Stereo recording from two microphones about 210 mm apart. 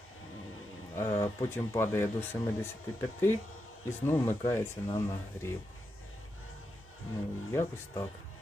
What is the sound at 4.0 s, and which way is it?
Speech, 10° left (ahead or behind).